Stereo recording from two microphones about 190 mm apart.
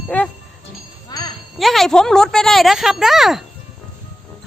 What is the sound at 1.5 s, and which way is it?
A woman's voice, centre (ahead or behind).